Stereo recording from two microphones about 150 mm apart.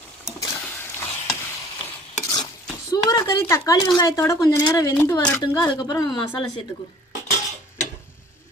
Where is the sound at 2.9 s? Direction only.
25° left (ahead or behind).